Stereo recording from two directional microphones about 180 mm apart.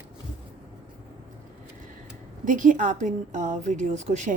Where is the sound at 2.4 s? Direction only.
45° right (ahead or behind).